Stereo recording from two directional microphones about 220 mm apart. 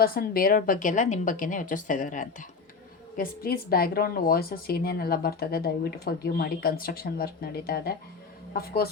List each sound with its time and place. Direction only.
0.0 s a woman's voice: 40° left (ahead or behind)